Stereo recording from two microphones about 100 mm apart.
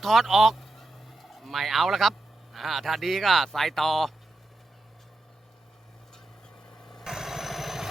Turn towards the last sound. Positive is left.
turn(degrees=0)  # may be behind; listen again after turning